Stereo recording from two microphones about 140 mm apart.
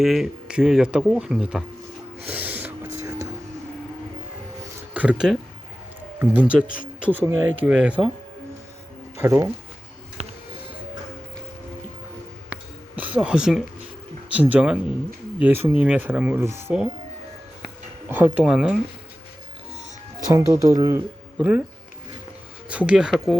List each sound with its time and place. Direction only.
0.0 s speech: centre (ahead or behind)
2.2 s gasp: 10° right (ahead or behind)
4.9 s speech: 5° right (ahead or behind)
9.1 s speech: 15° right (ahead or behind)
13.0 s speech: 10° right (ahead or behind)
18.1 s speech: 10° right (ahead or behind)
20.3 s speech: 20° right (ahead or behind)
21.3 s speech: 10° right (ahead or behind)
22.7 s speech: 10° right (ahead or behind)